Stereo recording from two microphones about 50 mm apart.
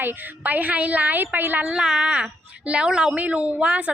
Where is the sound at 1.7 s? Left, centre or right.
Centre.